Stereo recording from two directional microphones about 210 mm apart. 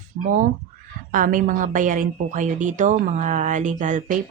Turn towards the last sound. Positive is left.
turn(degrees=-35)  # may be behind; listen again after turning